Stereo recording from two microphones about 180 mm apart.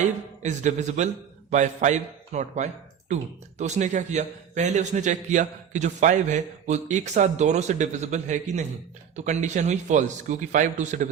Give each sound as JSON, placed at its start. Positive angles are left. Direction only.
{"t": 0.0, "sound": "a man's voice", "side_deg": -40}